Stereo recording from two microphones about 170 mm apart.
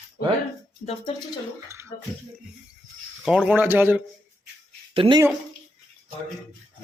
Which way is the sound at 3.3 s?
5° right (ahead or behind).